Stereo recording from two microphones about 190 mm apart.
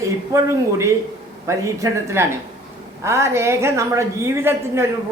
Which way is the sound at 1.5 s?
15° right (ahead or behind).